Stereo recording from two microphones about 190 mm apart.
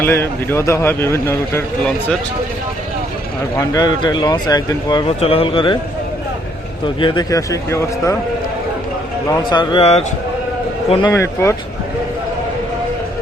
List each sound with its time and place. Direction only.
0.0 s speech: 10° left (ahead or behind)
3.7 s speech: 20° left (ahead or behind)
6.8 s speech: 25° left (ahead or behind)
9.3 s a man's voice: 20° left (ahead or behind)
11.1 s speech: 15° left (ahead or behind)